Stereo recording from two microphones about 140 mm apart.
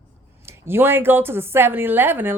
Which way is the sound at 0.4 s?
15° right (ahead or behind).